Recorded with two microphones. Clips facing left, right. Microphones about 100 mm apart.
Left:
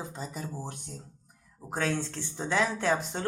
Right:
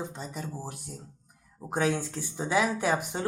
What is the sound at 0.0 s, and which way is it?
Speech, centre (ahead or behind).